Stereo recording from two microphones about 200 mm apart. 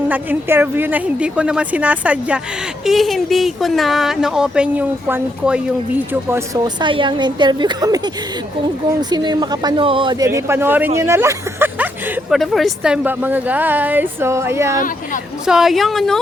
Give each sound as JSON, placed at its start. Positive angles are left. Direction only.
{"t": 0.1, "sound": "a woman's voice", "side_deg": -10}
{"t": 14.8, "sound": "speech", "side_deg": 40}
{"t": 15.4, "sound": "speech", "side_deg": 0}